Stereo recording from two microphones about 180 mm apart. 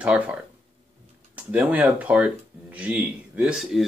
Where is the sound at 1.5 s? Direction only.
10° right (ahead or behind).